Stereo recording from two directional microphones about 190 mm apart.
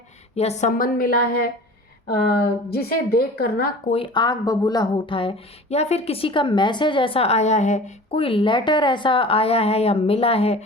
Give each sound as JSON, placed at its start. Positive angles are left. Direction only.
{"t": 0.3, "sound": "a woman's voice", "side_deg": 35}
{"t": 3.8, "sound": "speech", "side_deg": 30}